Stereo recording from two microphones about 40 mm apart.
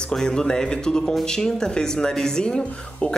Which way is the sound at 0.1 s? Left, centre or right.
Centre.